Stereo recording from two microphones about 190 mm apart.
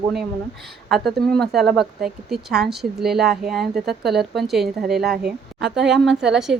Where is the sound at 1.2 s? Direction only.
Centre (ahead or behind).